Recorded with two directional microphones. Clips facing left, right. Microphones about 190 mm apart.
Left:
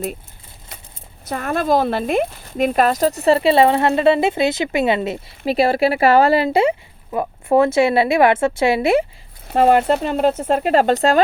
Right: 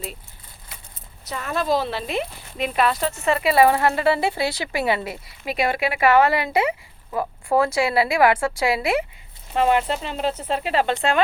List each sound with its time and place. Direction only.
1.2 s speech: 50° left (ahead or behind); by 9.0 s 25° left (ahead or behind)
9.6 s speech: 40° left (ahead or behind)